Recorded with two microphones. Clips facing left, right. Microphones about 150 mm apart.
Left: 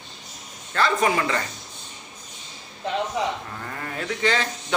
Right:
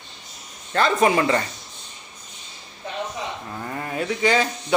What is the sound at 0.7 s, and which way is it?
Speech, 25° right (ahead or behind).